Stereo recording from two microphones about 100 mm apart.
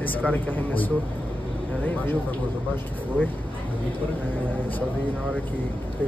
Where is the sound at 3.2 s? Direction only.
15° left (ahead or behind).